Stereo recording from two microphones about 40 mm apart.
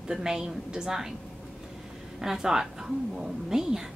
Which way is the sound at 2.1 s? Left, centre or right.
Centre.